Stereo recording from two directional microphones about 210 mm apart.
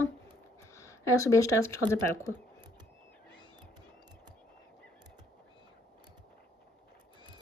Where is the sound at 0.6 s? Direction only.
15° left (ahead or behind).